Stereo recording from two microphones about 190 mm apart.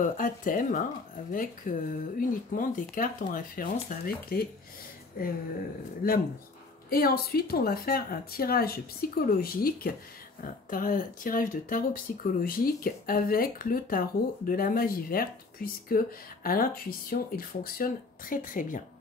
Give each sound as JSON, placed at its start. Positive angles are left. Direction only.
{"t": 0.0, "sound": "speech", "side_deg": 45}